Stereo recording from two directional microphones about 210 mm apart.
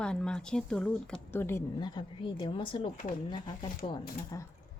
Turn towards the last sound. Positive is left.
turn(degrees=15)  # may be behind; listen again after turning